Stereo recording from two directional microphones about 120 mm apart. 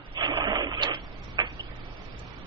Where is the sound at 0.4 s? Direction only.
35° right (ahead or behind).